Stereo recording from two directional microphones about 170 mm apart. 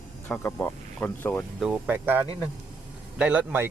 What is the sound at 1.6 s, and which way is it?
Speech, 5° right (ahead or behind).